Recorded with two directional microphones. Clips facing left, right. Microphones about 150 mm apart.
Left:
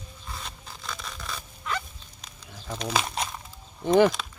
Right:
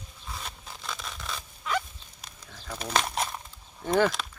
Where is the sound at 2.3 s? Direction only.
5° right (ahead or behind).